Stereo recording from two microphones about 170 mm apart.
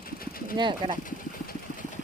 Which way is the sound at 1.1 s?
50° left (ahead or behind).